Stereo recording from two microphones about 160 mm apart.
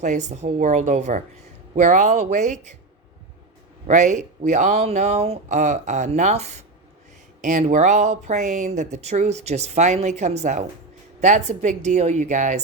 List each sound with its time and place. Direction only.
0.0 s speech: 45° right (ahead or behind)
3.8 s speech: 50° right (ahead or behind)